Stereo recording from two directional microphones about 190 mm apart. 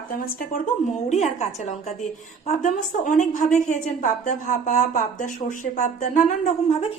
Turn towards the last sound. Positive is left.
turn(degrees=30)  # may be behind; listen again after turning